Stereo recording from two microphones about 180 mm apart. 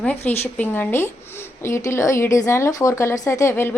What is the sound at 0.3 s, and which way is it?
Speech, 10° left (ahead or behind).